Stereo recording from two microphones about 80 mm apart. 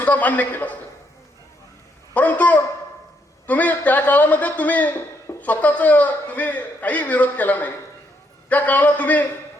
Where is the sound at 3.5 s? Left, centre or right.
Centre.